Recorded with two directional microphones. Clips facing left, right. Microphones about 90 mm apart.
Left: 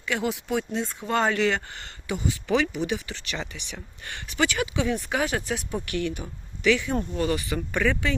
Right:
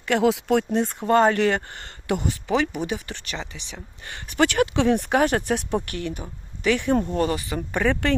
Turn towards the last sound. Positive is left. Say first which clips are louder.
# right 1 dB
turn(degrees=-25)  # may be behind; listen again after turning